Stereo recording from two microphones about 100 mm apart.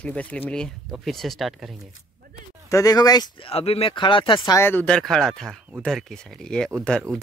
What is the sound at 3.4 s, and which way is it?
Speech, 80° left.